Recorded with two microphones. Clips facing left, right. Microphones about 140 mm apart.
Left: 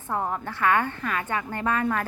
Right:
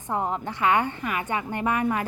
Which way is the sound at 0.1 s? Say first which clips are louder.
Right 1 dB; 20° right (ahead or behind).